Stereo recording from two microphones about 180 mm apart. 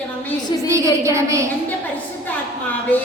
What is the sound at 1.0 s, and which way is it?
Speech, 15° right (ahead or behind).